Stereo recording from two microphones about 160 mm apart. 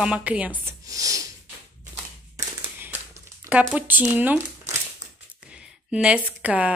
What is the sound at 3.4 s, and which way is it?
Speech, 10° right (ahead or behind).